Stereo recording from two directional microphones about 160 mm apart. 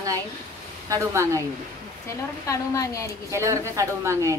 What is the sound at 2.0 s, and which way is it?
A woman's voice, 20° left (ahead or behind).